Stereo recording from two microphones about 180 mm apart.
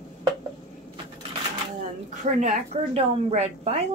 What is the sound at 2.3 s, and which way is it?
A woman's voice, 40° right (ahead or behind).